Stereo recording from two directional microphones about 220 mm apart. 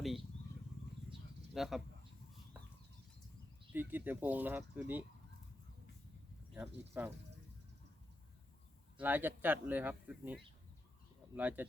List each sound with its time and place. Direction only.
1.5 s speech: centre (ahead or behind)
3.7 s speech: 10° right (ahead or behind)
6.5 s speech: 5° right (ahead or behind)
9.0 s speech: 10° right (ahead or behind)